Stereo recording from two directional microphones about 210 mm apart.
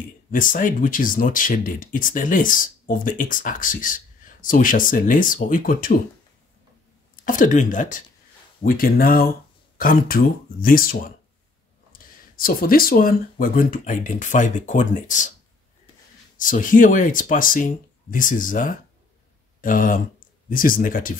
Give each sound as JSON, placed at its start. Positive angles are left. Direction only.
{"t": 0.3, "sound": "speech", "side_deg": 40}
{"t": 7.2, "sound": "speech", "side_deg": 40}
{"t": 16.3, "sound": "speech", "side_deg": 40}